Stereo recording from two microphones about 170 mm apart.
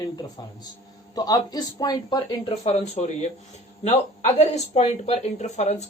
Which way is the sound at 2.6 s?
40° left (ahead or behind).